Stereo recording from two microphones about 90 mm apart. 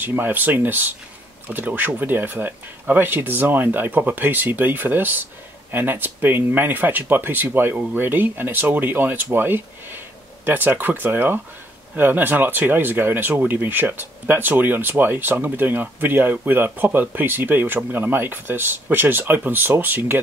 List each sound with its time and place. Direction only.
0.0 s speech: 20° right (ahead or behind)